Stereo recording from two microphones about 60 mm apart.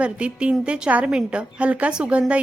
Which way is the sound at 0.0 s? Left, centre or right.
Centre.